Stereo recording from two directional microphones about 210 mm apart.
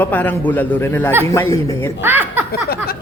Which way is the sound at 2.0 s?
10° right (ahead or behind).